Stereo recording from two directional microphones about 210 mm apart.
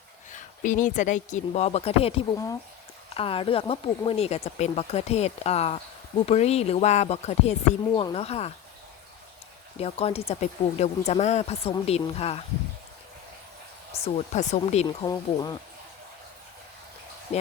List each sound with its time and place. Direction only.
0.3 s speech: 35° left (ahead or behind)
9.7 s speech: 30° left (ahead or behind)
13.9 s speech: 30° left (ahead or behind)
15.0 s speech: 20° left (ahead or behind)